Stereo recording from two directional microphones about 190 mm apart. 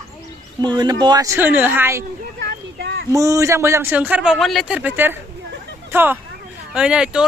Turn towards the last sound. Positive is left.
turn(degrees=-5)  # may be behind; listen again after turning